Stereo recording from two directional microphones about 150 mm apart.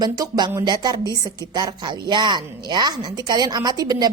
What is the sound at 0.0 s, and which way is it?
A woman's voice, 25° right (ahead or behind).